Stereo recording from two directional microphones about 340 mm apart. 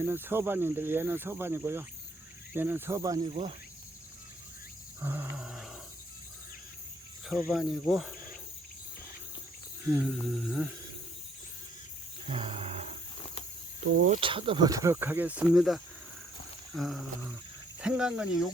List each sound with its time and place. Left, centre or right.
0.0 s speech: centre
4.9 s speech: centre
7.3 s speech: centre
9.9 s speech: centre
12.3 s roar: centre
13.9 s speech: right
14.2 s speech: centre